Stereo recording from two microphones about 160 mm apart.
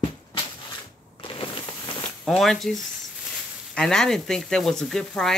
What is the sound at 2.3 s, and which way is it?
Speech, centre (ahead or behind).